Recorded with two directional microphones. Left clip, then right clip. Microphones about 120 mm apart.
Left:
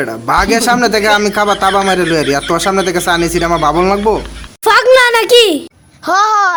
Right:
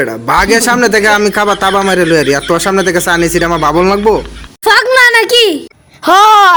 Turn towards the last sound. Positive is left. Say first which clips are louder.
# right 6 dB
turn(degrees=-55)  # may be behind; listen again after turning